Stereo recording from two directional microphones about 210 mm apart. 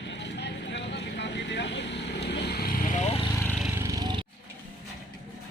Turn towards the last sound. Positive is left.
turn(degrees=-20)  # may be behind; listen again after turning